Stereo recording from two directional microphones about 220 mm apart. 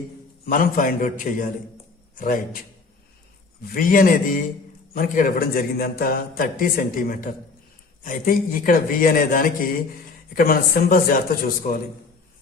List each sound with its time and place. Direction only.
0.4 s a man's voice: 40° left (ahead or behind)
3.8 s a man's voice: 40° left (ahead or behind)